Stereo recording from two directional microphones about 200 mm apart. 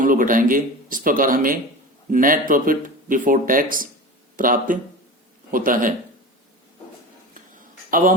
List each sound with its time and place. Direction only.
0.0 s speech: 40° right (ahead or behind)
7.9 s speech: 45° right (ahead or behind)